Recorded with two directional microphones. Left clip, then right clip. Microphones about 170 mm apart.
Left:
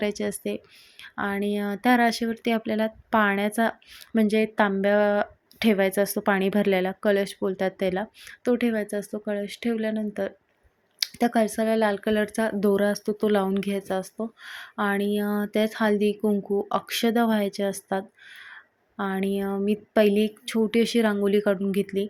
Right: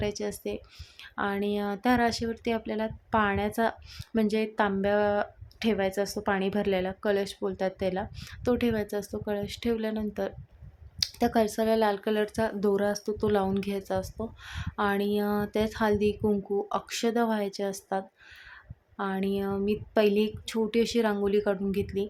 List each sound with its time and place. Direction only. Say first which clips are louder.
0.0 s speech: left 4 dB; 20° left (ahead or behind)